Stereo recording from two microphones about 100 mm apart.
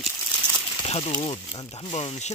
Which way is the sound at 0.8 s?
70° left (ahead or behind).